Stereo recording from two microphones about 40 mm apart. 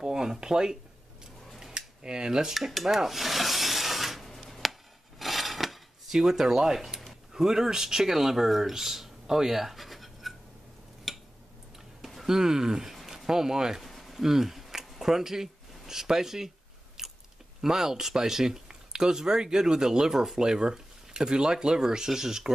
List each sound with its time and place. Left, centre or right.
0.0 s speech: centre
1.7 s cutlery: right; by 3.0 s centre
3.1 s rub: centre
4.5 s chop: centre
5.2 s dishes: centre
7.3 s speech: centre
11.1 s a sound: centre
12.3 s speech: centre
12.9 s speech: centre
13.8 s a sound: centre
14.2 s a sound: centre
17.6 s speech: centre